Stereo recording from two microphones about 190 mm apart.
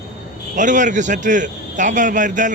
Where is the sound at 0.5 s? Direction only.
40° right (ahead or behind).